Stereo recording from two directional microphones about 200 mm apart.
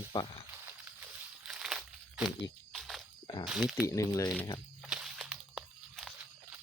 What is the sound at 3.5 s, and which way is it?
Speech, centre (ahead or behind).